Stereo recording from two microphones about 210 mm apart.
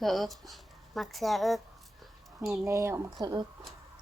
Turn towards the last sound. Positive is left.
turn(degrees=-20)  # may be behind; listen again after turning